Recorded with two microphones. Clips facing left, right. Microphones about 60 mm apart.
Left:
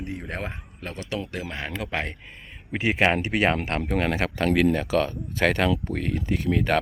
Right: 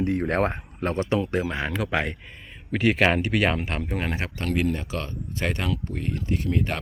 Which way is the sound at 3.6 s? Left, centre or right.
Left.